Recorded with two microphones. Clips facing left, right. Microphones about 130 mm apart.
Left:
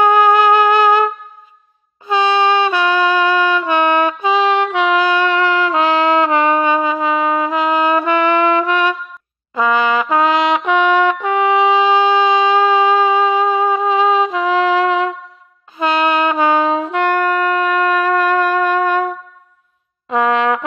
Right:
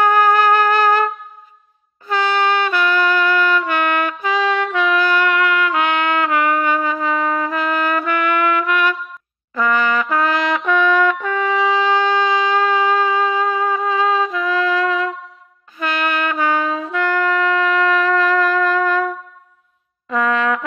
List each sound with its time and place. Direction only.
0.0 s music: 20° left (ahead or behind)
2.0 s trumpet: 20° left (ahead or behind)
9.5 s brass instrument: 20° left (ahead or behind)
11.4 s wind instrument: 20° left (ahead or behind)
15.8 s music: 25° left (ahead or behind)
17.7 s shofar: 50° left (ahead or behind)
18.6 s wind instrument: 15° left (ahead or behind)
20.1 s brass instrument: 25° left (ahead or behind)